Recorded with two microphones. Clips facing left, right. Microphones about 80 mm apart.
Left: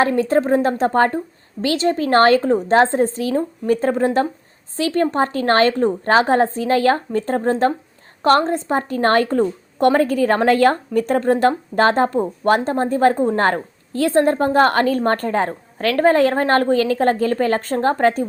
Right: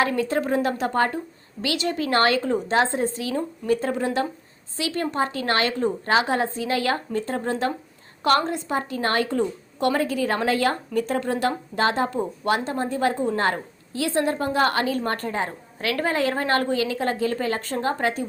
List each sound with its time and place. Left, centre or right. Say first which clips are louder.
0.0 s a woman's voice: left 6 dB; left